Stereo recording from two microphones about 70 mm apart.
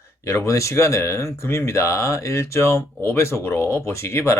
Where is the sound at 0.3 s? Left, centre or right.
Left.